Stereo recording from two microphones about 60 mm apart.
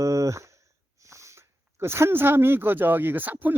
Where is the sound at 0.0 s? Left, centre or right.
Right.